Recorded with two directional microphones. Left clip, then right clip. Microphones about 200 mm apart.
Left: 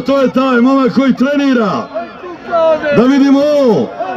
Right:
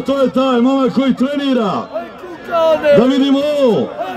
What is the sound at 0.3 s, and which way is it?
A man's voice, 30° left (ahead or behind).